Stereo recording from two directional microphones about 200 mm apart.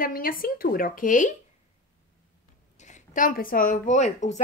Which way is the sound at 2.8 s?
40° left (ahead or behind).